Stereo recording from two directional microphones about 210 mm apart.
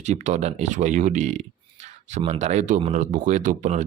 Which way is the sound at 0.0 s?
35° right (ahead or behind).